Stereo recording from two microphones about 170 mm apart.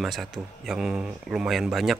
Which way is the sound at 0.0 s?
Centre (ahead or behind).